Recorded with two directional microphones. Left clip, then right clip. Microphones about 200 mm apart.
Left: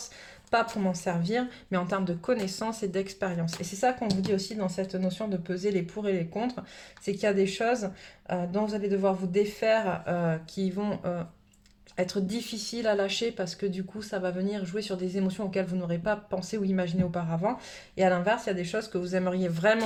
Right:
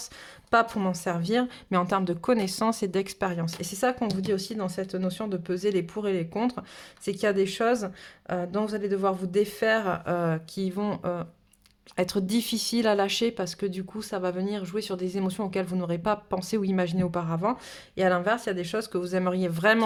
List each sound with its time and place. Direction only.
0.5 s speech: 40° right (ahead or behind)